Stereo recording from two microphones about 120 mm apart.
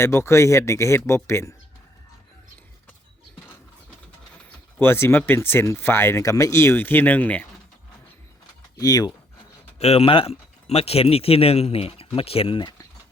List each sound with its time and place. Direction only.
0.0 s speech: 20° left (ahead or behind)
4.8 s speech: 20° left (ahead or behind)
8.8 s speech: 35° left (ahead or behind)
9.7 s speech: 60° left (ahead or behind)